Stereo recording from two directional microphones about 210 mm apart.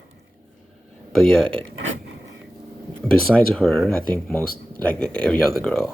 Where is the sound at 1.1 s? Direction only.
Centre (ahead or behind).